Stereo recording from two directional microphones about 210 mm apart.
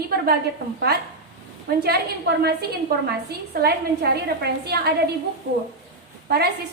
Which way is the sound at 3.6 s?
50° right (ahead or behind).